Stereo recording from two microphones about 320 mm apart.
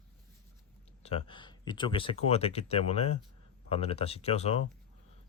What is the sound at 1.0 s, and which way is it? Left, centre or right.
Speech, centre.